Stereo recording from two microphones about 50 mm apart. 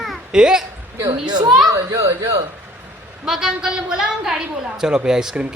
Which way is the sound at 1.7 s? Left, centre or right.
Right.